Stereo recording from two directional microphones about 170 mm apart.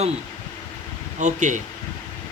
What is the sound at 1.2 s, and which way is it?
Speech, 45° right (ahead or behind).